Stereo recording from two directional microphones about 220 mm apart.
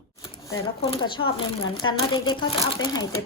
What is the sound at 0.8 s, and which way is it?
A woman's voice, 25° left (ahead or behind).